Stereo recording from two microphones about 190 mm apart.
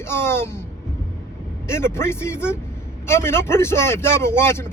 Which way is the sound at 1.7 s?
15° left (ahead or behind).